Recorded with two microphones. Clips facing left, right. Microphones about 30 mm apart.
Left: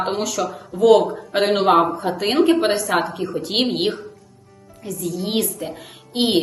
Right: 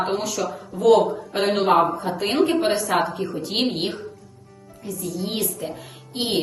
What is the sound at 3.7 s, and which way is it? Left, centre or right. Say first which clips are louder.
Speech: left 4 dB; left.